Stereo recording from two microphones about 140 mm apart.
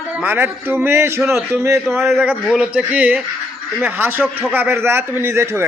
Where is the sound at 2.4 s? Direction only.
5° right (ahead or behind).